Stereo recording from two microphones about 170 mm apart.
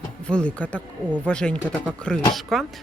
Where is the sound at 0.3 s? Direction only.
5° left (ahead or behind).